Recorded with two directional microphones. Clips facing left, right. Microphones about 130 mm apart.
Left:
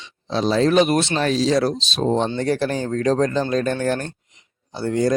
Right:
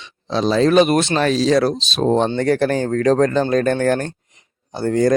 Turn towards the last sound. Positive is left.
turn(degrees=-50)  # may be behind; listen again after turning